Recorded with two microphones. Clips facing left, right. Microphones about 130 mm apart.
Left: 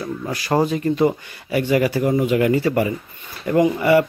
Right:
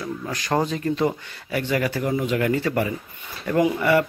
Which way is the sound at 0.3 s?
10° left (ahead or behind).